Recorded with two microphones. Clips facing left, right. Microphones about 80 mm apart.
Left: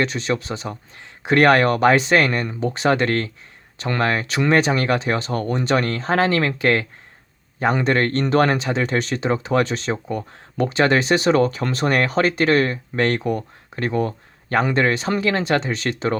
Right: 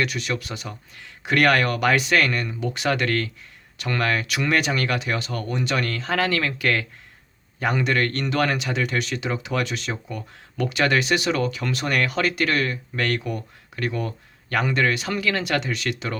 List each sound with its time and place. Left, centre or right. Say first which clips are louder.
0.0 s speech: left 4 dB; left